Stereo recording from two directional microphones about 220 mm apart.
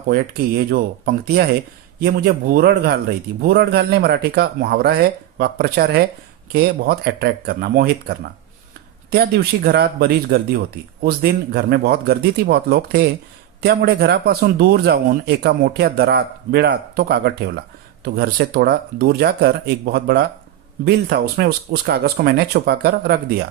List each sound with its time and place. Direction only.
0.1 s speech: 40° right (ahead or behind)